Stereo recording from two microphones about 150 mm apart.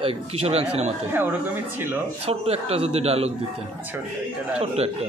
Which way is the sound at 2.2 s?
45° right (ahead or behind).